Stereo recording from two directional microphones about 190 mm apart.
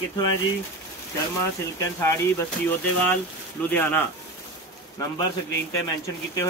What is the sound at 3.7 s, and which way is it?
Speech, 10° left (ahead or behind).